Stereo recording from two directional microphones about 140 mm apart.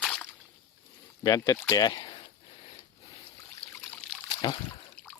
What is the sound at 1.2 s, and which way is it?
Speech, 25° left (ahead or behind).